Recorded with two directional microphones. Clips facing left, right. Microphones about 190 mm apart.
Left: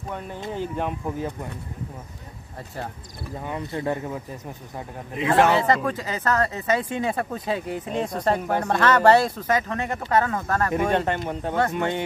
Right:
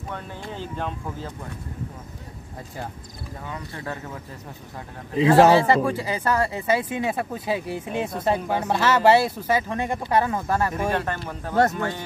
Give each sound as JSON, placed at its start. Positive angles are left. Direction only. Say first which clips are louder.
{"t": 0.4, "sound": "speech", "louder": "left 5 dB", "side_deg": 15}
{"t": 3.4, "sound": "speech", "louder": "left 7 dB", "side_deg": 20}
{"t": 5.1, "sound": "a man's voice", "louder": "right 4 dB", "side_deg": -30}
{"t": 5.6, "sound": "speech", "louder": "right 2 dB", "side_deg": -10}
{"t": 10.9, "sound": "speech", "louder": "left 3 dB", "side_deg": 25}